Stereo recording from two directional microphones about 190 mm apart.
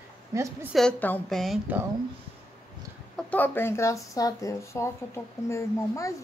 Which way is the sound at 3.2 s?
10° left (ahead or behind).